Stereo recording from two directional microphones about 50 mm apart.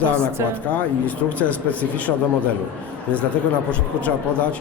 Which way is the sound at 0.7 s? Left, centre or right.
Left.